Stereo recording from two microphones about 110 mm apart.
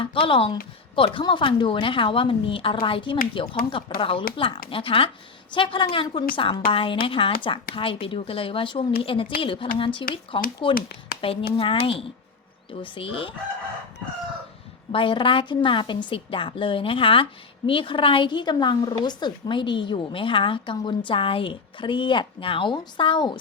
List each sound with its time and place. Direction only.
0.0 s speech: 55° left (ahead or behind)
14.9 s speech: 50° left (ahead or behind)